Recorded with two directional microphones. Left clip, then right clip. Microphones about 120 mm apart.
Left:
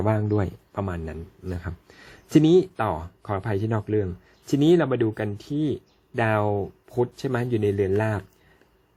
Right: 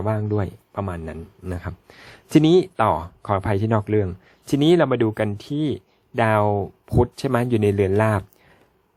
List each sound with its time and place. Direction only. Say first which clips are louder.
0.0 s speech: even; centre (ahead or behind)
0.3 s speech: even; 15° right (ahead or behind)
6.6 s speech: right 4 dB; 45° right (ahead or behind)